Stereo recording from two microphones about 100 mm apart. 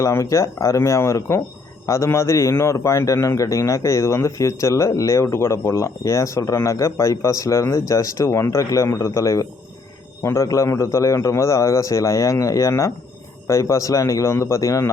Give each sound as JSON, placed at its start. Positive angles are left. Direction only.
{"t": 0.0, "sound": "a man's voice", "side_deg": 30}